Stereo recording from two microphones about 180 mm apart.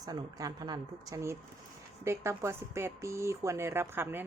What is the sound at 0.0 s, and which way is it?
Speech, 20° right (ahead or behind).